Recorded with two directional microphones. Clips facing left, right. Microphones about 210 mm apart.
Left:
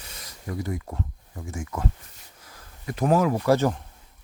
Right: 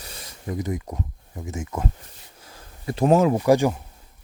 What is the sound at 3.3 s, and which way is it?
Speech, 15° right (ahead or behind).